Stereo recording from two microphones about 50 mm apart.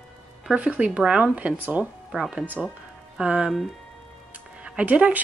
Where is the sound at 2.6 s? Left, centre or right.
Centre.